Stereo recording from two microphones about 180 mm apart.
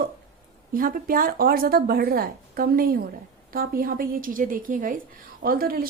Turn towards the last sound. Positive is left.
turn(degrees=-55)  # may be behind; listen again after turning